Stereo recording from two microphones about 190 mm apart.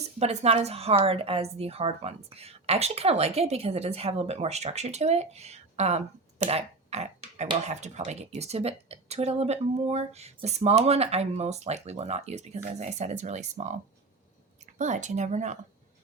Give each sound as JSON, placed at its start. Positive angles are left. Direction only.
{"t": 0.2, "sound": "speech", "side_deg": -35}
{"t": 14.8, "sound": "speech", "side_deg": -40}